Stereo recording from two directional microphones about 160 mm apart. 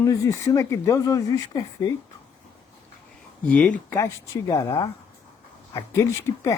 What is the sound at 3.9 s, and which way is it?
Speech, 20° left (ahead or behind).